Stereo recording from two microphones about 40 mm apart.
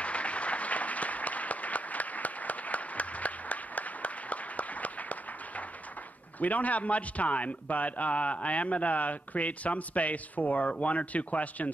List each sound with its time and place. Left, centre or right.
0.0 s applause: left
6.4 s a man's voice: left